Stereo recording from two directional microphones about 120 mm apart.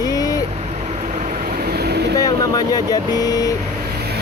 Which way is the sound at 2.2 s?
30° left (ahead or behind).